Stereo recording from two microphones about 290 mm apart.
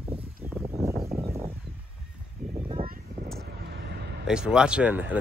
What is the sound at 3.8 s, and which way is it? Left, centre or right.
Vehicle, right.